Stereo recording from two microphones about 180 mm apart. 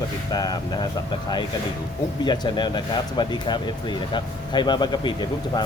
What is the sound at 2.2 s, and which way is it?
Speech, 25° left (ahead or behind).